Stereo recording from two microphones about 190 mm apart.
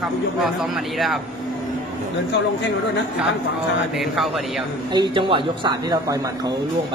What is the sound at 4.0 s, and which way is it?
Speech, centre (ahead or behind).